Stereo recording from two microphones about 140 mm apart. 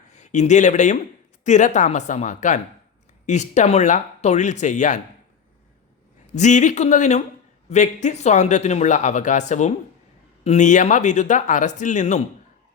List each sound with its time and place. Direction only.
0.1 s speech: 60° left (ahead or behind)
6.3 s speech: 60° left (ahead or behind)